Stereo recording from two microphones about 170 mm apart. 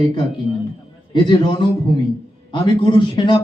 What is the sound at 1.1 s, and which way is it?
Speech, 30° left (ahead or behind).